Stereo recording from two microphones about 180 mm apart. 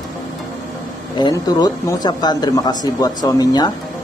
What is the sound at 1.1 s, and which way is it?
A woman's voice, 20° left (ahead or behind).